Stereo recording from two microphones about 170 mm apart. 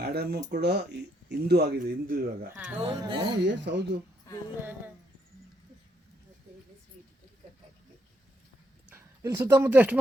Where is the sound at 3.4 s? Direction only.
90° right.